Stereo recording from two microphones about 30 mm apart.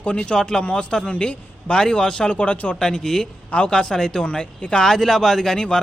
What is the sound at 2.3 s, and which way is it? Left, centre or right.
Speech, left.